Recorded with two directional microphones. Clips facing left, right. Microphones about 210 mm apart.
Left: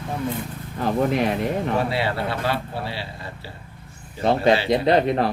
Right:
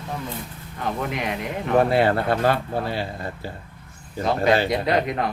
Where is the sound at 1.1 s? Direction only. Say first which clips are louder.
Left 6 dB; 35° left (ahead or behind).